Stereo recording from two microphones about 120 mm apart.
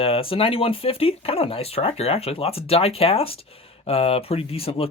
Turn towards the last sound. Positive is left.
turn(degrees=55)  # may be behind; listen again after turning